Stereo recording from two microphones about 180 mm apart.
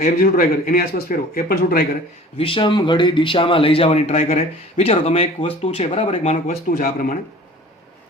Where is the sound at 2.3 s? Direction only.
30° left (ahead or behind).